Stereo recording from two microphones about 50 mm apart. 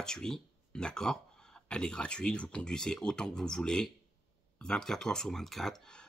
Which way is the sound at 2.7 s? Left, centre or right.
Centre.